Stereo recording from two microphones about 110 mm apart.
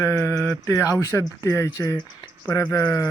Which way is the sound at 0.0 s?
25° left (ahead or behind).